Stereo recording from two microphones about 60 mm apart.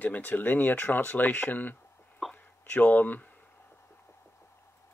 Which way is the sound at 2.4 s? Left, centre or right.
Left.